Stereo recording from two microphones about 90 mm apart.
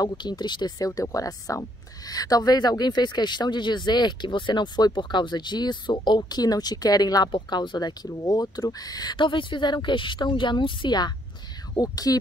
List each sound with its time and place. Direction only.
0.0 s speech: 50° left (ahead or behind)
7.4 s speech: 55° left (ahead or behind)